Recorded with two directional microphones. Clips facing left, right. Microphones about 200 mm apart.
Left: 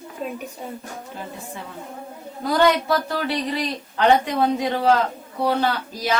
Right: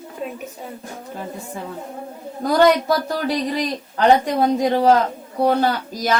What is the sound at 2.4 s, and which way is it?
Speech, 45° right (ahead or behind).